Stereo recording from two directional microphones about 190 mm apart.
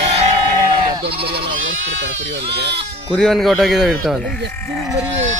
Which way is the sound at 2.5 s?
60° right (ahead or behind).